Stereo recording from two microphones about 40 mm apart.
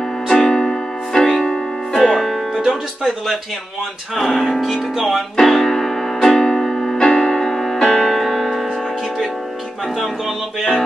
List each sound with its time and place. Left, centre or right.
0.3 s music: centre
2.0 s music: centre
2.5 s music: centre
3.0 s speech: centre
4.9 s music: centre
5.4 s piano: centre